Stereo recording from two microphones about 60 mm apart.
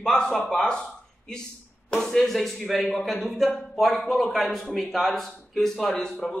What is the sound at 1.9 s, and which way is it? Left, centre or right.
A man's voice, centre.